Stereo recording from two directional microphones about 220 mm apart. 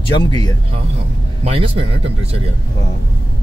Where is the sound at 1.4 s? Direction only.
25° right (ahead or behind).